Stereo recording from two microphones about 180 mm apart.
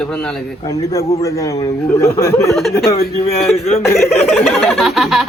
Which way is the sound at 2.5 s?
Centre (ahead or behind).